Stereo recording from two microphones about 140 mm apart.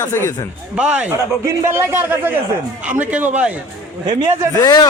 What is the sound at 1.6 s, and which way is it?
A man's voice, 20° right (ahead or behind).